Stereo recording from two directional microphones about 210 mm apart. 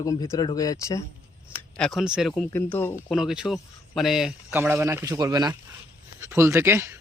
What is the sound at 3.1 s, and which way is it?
Speech, centre (ahead or behind).